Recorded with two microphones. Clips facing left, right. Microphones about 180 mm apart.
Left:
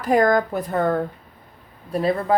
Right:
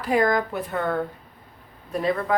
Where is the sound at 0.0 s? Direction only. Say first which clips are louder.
Left 4 dB; 45° left (ahead or behind).